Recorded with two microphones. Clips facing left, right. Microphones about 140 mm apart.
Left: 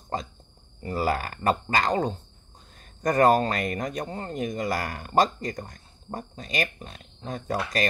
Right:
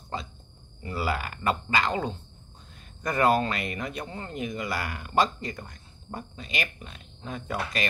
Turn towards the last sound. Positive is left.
turn(degrees=40)  # may be behind; listen again after turning